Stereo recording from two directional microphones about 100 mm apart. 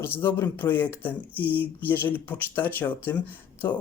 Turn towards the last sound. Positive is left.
turn(degrees=20)  # may be behind; listen again after turning